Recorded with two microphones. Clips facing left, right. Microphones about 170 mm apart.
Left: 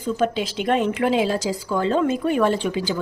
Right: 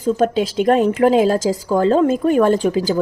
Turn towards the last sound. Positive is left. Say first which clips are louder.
# right 7 dB
turn(degrees=-40)  # may be behind; listen again after turning